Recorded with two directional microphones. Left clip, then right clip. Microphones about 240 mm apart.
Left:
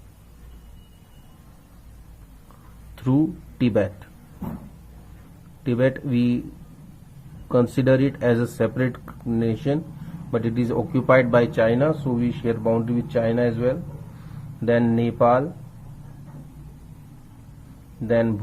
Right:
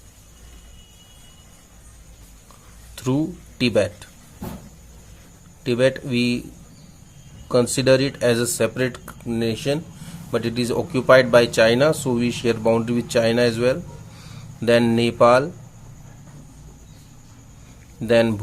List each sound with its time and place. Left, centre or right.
2.9 s speech: centre
5.6 s speech: centre
7.4 s speech: centre
18.0 s speech: right